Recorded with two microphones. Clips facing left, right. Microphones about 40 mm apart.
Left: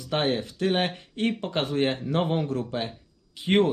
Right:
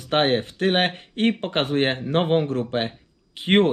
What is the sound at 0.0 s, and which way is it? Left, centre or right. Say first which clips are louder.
Speech: right 5 dB; right.